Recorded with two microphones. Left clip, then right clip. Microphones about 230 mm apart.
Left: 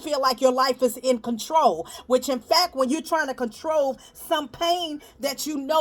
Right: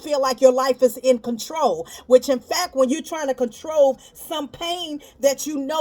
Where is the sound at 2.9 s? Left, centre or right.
Left.